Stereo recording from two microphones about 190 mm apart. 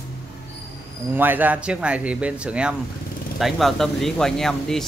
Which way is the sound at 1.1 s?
10° right (ahead or behind).